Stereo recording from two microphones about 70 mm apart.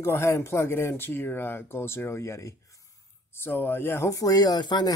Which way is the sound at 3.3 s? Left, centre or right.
Left.